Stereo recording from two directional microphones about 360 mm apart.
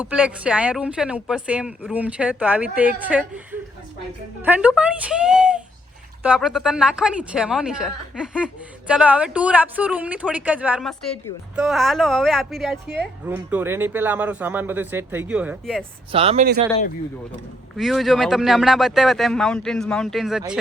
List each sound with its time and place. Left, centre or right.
0.0 s speech: centre
16.1 s speech: centre
17.7 s speech: centre